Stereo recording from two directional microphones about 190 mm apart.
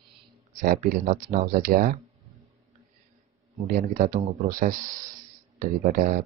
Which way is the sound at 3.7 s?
45° right (ahead or behind).